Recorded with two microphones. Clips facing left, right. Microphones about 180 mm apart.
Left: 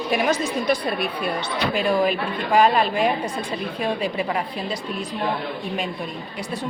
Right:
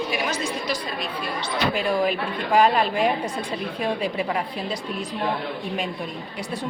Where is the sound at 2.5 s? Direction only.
75° left (ahead or behind).